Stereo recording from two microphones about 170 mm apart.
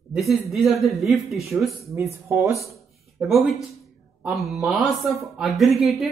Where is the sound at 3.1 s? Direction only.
Centre (ahead or behind).